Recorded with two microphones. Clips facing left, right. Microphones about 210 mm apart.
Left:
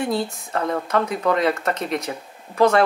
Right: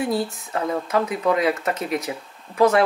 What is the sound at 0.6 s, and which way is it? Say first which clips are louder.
Speech: left 1 dB; 10° right (ahead or behind).